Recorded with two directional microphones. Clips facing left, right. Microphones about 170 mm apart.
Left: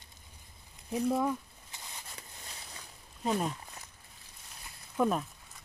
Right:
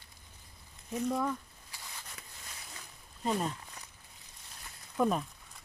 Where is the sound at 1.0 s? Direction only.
10° left (ahead or behind).